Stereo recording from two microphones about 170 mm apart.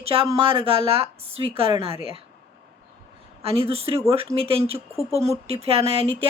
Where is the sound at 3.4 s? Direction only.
35° right (ahead or behind).